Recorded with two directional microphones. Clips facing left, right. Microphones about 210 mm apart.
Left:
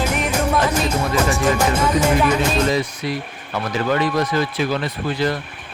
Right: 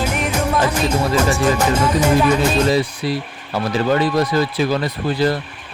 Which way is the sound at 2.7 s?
30° right (ahead or behind).